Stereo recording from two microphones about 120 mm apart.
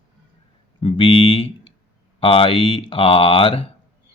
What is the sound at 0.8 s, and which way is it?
Speech, 50° left (ahead or behind).